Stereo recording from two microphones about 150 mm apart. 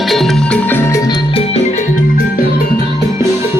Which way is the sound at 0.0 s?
Centre (ahead or behind).